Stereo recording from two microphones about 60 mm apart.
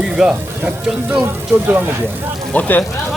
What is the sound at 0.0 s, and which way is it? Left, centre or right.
Speech, centre.